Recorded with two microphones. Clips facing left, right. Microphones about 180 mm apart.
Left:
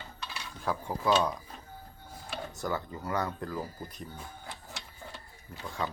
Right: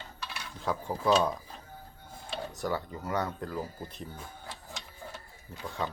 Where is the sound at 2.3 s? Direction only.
20° right (ahead or behind).